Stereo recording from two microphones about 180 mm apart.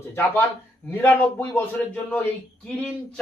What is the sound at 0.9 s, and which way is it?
Speech, 10° left (ahead or behind).